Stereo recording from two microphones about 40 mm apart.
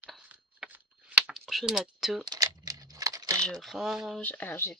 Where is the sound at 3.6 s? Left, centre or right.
Centre.